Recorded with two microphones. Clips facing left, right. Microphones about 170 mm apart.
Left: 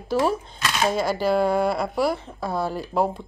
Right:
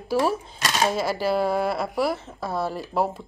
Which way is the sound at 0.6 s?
40° right (ahead or behind).